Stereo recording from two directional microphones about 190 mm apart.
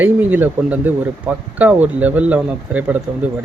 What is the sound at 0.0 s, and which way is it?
Speech, 10° right (ahead or behind).